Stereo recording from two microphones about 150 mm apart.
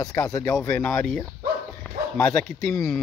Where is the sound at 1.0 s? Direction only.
Centre (ahead or behind).